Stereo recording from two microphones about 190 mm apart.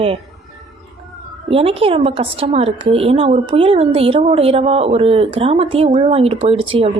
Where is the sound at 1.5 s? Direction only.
30° right (ahead or behind).